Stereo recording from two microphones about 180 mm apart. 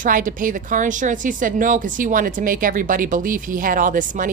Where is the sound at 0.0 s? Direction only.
50° right (ahead or behind).